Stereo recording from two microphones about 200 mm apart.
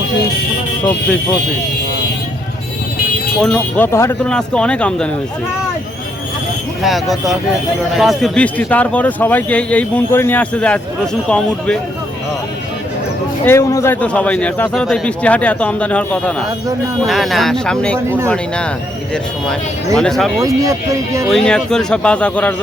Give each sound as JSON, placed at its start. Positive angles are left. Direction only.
{"t": 3.4, "sound": "speech", "side_deg": 5}
{"t": 6.8, "sound": "a man's voice", "side_deg": 0}
{"t": 13.4, "sound": "a man's voice", "side_deg": 15}
{"t": 20.0, "sound": "speech", "side_deg": 0}
{"t": 20.4, "sound": "speech", "side_deg": -15}
{"t": 21.2, "sound": "speech", "side_deg": 5}